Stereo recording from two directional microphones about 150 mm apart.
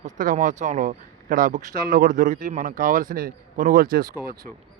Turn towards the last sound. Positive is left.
turn(degrees=-80)